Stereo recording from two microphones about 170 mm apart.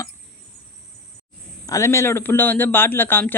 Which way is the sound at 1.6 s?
20° left (ahead or behind).